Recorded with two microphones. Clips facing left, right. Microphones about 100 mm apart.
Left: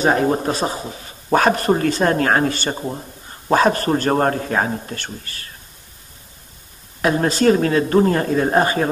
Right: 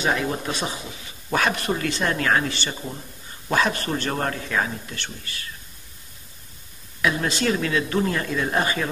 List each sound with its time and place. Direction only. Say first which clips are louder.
0.0 s a man's voice: left 7 dB; 40° left (ahead or behind)
7.0 s a man's voice: left 6 dB; 40° left (ahead or behind)